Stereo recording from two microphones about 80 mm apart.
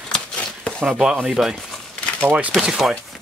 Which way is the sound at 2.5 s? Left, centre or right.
Centre.